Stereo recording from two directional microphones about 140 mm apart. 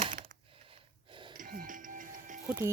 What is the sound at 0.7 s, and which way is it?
Gasp, 35° right (ahead or behind).